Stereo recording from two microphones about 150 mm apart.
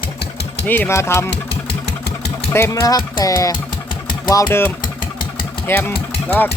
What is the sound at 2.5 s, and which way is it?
Speech, 20° left (ahead or behind).